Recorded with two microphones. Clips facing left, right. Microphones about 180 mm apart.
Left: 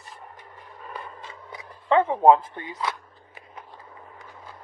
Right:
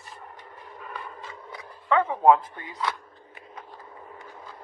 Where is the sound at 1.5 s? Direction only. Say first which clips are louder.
Left 3 dB; 25° left (ahead or behind).